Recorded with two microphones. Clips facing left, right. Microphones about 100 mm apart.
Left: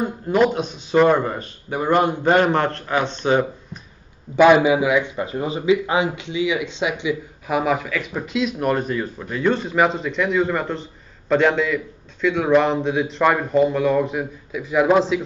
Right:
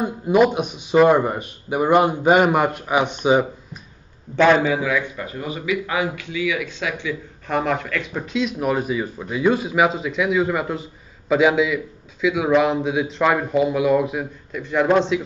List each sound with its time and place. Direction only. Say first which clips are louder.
0.0 s speech: right 2 dB; 10° right (ahead or behind)
4.4 s speech: left 3 dB; 15° left (ahead or behind)
7.4 s speech: left 1 dB; 5° left (ahead or behind)